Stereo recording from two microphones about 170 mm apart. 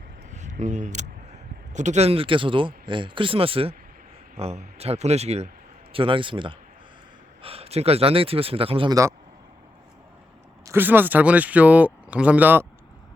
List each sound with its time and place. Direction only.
0.3 s speech: 45° right (ahead or behind)
10.7 s speech: 10° right (ahead or behind)